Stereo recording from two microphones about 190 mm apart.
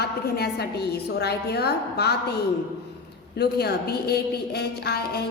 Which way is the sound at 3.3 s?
55° left (ahead or behind).